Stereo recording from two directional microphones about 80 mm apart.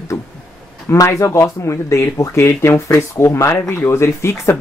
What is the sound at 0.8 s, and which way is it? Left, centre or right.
Speech, left.